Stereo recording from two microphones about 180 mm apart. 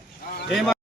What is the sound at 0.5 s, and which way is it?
Speech, centre (ahead or behind).